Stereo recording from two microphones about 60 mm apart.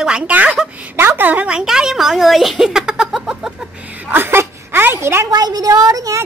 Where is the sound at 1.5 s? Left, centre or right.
Centre.